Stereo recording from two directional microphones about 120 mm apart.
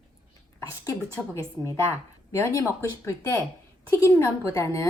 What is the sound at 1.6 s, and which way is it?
Speech, 25° left (ahead or behind).